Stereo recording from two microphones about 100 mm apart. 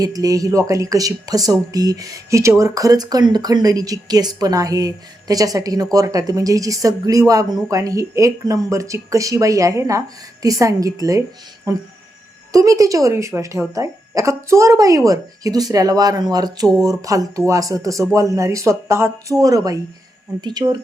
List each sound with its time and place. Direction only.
0.0 s speech: 35° right (ahead or behind)
19.4 s speech: 35° right (ahead or behind)